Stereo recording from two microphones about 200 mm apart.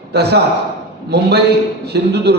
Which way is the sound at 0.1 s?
55° right (ahead or behind).